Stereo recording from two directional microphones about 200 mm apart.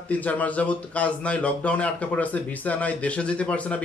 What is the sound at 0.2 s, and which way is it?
Speech, 5° left (ahead or behind).